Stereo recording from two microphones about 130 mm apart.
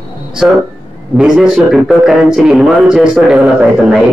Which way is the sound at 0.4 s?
Centre (ahead or behind).